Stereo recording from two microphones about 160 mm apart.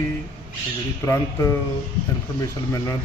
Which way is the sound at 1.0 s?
15° left (ahead or behind).